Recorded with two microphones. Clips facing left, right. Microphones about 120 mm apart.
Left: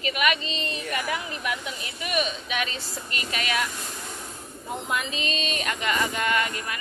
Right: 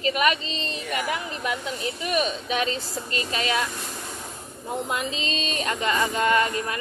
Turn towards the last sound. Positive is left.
turn(degrees=-30)  # may be behind; listen again after turning